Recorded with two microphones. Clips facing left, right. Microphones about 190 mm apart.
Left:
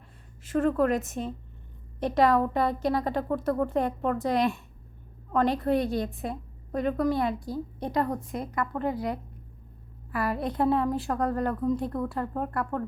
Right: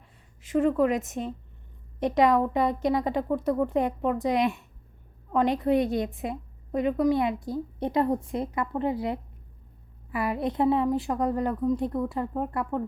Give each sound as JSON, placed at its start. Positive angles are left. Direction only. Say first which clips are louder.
{"t": 0.4, "sound": "a woman's voice", "louder": "right 1 dB", "side_deg": -15}